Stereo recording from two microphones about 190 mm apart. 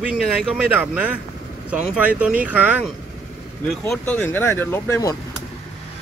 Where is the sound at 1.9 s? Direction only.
5° right (ahead or behind).